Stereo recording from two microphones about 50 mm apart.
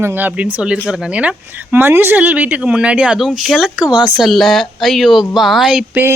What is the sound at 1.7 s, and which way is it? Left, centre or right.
Speech, right.